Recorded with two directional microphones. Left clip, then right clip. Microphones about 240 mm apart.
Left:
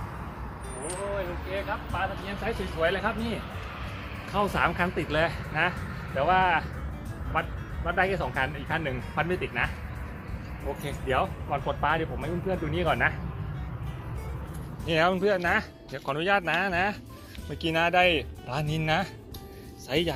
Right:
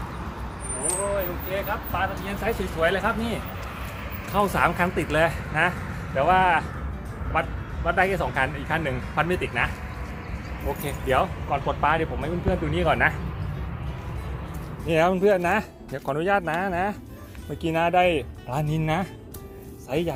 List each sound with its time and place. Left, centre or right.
1.5 s speech: centre
7.9 s speech: centre
10.8 s speech: centre
14.8 s speech: centre
19.9 s speech: centre